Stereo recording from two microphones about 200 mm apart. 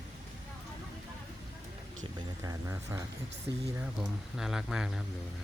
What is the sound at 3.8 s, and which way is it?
Speech, centre (ahead or behind).